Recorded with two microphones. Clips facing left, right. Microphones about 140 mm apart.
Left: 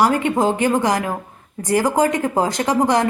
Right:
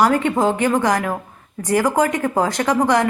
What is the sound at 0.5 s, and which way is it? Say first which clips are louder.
Speech: even; 25° left (ahead or behind).